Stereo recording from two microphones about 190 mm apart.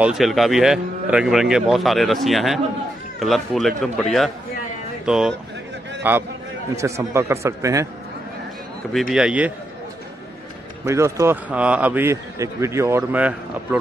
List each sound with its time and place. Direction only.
0.0 s a man's voice: centre (ahead or behind)
9.1 s a man's voice: 5° right (ahead or behind)
10.9 s a man's voice: 15° right (ahead or behind)